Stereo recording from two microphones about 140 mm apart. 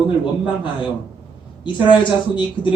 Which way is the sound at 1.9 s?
35° left (ahead or behind).